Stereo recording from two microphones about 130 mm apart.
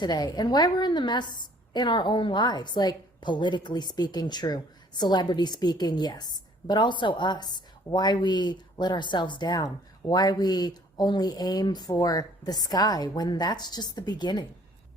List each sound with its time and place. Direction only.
0.0 s a woman's voice: 30° left (ahead or behind)